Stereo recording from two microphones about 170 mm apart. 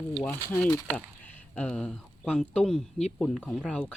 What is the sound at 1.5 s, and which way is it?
Speech, 5° left (ahead or behind).